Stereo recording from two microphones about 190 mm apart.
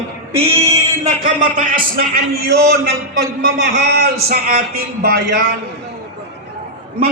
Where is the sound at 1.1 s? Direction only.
40° right (ahead or behind).